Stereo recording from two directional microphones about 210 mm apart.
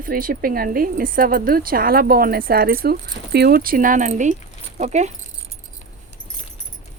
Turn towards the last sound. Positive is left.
turn(degrees=-35)  # may be behind; listen again after turning